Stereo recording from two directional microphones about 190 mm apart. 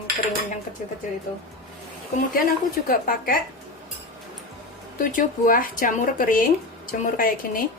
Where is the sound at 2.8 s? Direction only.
45° left (ahead or behind).